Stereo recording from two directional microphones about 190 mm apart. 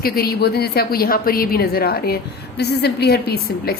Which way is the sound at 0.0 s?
55° left (ahead or behind).